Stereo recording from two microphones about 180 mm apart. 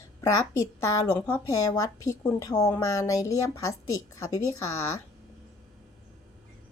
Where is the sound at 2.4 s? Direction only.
20° left (ahead or behind).